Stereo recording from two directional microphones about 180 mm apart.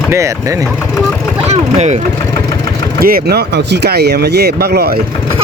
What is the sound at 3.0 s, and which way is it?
Speech, 60° right (ahead or behind).